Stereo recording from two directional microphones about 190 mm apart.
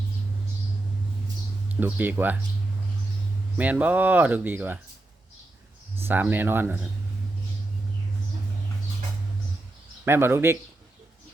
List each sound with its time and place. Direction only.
1.7 s speech: 10° right (ahead or behind)
3.6 s speech: 10° right (ahead or behind)
6.0 s speech: 10° right (ahead or behind)
10.1 s speech: 10° right (ahead or behind)